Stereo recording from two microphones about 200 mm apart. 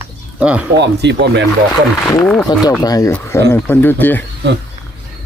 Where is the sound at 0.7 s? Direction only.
60° right (ahead or behind).